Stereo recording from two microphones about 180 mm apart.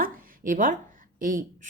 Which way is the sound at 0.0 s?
50° right (ahead or behind).